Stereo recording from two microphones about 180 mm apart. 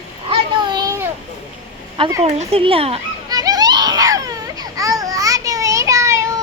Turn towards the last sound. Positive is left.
turn(degrees=-15)  # may be behind; listen again after turning